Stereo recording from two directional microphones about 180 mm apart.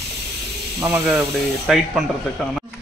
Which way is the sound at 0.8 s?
10° right (ahead or behind).